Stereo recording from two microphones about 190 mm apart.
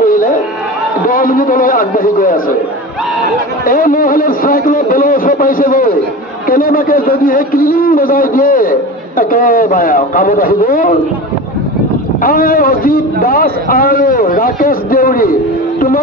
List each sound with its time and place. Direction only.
0.0 s a sound: 50° left (ahead or behind)
1.0 s a man's voice: 50° left (ahead or behind)
3.6 s a man's voice: 50° left (ahead or behind)
12.2 s a man's voice: 50° left (ahead or behind)